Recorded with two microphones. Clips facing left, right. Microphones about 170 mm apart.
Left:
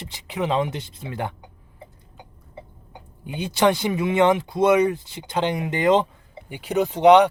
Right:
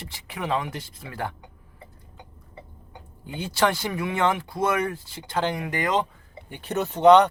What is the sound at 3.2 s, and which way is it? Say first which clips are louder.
Speech: left 4 dB; 20° left (ahead or behind).